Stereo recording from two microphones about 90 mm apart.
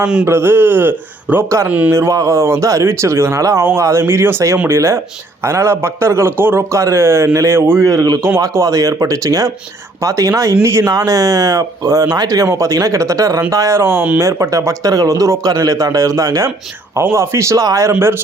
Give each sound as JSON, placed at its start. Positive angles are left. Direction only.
{"t": 0.0, "sound": "a man's voice", "side_deg": -10}
{"t": 0.3, "sound": "a man's voice", "side_deg": -25}
{"t": 1.6, "sound": "a man's voice", "side_deg": -15}
{"t": 1.9, "sound": "a man's voice", "side_deg": -35}
{"t": 14.3, "sound": "speech", "side_deg": -35}